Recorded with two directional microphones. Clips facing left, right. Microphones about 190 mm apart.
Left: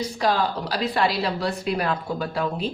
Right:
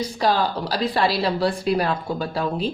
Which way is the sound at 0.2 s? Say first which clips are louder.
Right 2 dB; 30° right (ahead or behind).